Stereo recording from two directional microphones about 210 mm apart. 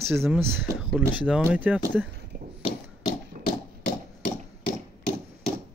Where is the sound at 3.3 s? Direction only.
35° right (ahead or behind).